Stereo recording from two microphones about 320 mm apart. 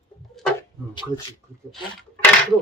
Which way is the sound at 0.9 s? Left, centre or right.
Centre.